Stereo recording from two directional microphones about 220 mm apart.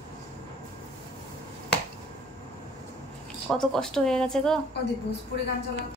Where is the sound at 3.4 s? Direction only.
5° left (ahead or behind).